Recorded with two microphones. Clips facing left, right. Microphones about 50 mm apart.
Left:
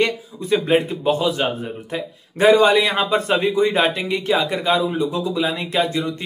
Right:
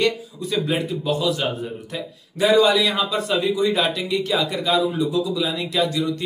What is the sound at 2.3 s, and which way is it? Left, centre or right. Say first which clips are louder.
A man's voice: left 3 dB; left.